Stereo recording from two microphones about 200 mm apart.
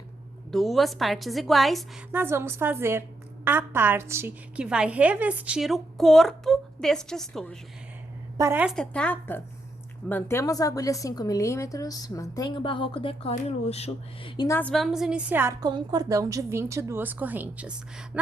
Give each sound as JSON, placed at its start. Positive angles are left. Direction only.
{"t": 0.5, "sound": "a woman's voice", "side_deg": 0}
{"t": 2.1, "sound": "a woman's voice", "side_deg": -10}
{"t": 8.4, "sound": "a woman's voice", "side_deg": -15}
{"t": 8.6, "sound": "a woman's voice", "side_deg": 5}
{"t": 14.7, "sound": "a woman's voice", "side_deg": 0}